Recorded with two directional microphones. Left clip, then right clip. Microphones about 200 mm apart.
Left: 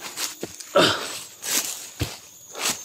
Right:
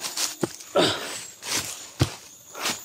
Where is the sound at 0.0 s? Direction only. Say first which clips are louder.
Right 2 dB; 10° right (ahead or behind).